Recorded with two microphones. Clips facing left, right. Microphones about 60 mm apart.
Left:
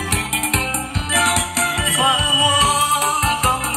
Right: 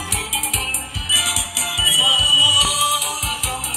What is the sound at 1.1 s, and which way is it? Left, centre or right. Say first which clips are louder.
Music: left 7 dB; left.